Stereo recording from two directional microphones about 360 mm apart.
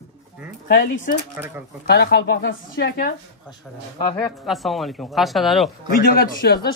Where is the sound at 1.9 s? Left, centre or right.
Left.